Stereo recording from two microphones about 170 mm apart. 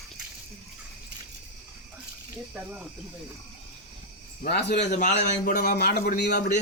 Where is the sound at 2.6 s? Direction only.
10° right (ahead or behind).